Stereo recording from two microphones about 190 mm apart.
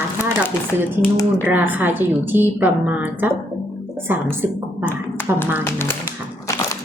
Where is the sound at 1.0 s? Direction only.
10° left (ahead or behind).